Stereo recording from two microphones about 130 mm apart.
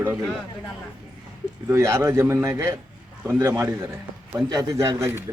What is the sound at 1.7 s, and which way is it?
A man's voice, 20° right (ahead or behind).